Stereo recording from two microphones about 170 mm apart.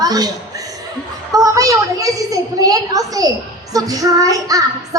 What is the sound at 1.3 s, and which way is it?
A woman's voice, 20° right (ahead or behind).